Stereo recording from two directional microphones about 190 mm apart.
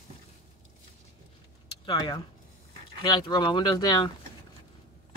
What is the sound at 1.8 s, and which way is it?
Speech, 25° left (ahead or behind).